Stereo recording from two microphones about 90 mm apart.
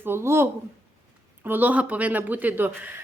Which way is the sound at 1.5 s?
20° right (ahead or behind).